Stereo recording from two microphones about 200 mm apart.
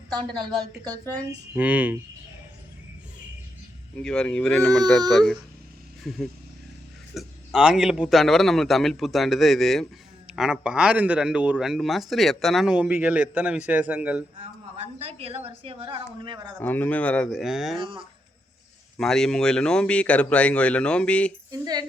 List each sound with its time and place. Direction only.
0.1 s speech: 20° right (ahead or behind)
1.5 s speech: 5° right (ahead or behind)
3.9 s speech: 5° left (ahead or behind)
14.8 s speech: 30° right (ahead or behind)
16.6 s speech: 10° left (ahead or behind)
18.9 s speech: 5° left (ahead or behind)
21.5 s speech: 20° right (ahead or behind)